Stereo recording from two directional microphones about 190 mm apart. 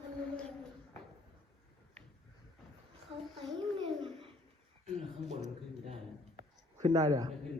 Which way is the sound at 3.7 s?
25° right (ahead or behind).